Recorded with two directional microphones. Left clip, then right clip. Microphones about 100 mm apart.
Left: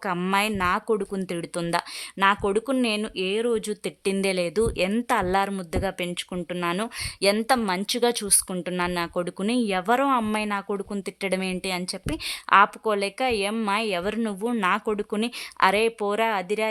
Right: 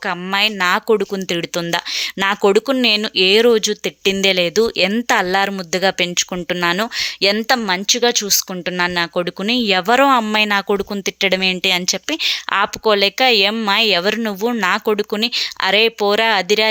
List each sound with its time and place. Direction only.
0.0 s speech: centre (ahead or behind)
0.9 s speech: 20° right (ahead or behind)
2.1 s speech: 30° right (ahead or behind)
3.6 s speech: 20° right (ahead or behind)
6.1 s speech: 30° right (ahead or behind)
6.6 s speech: 20° right (ahead or behind)
15.4 s speech: 10° right (ahead or behind)
16.0 s speech: 20° right (ahead or behind)